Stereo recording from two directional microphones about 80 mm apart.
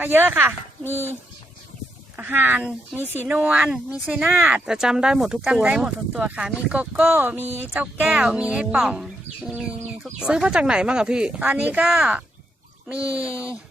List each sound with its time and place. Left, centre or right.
0.0 s speech: right
2.1 s speech: right
4.3 s speech: centre